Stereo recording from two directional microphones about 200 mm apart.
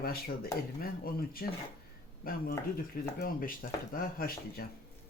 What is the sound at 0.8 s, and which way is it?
Speech, 45° left (ahead or behind).